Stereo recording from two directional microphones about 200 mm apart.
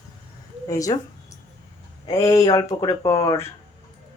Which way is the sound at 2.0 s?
15° left (ahead or behind).